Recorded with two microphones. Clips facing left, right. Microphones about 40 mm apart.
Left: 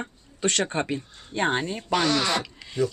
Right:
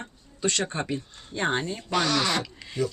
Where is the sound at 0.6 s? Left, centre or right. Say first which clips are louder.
Left 3 dB; centre.